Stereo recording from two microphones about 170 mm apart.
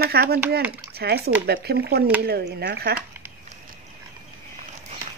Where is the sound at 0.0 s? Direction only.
65° right (ahead or behind).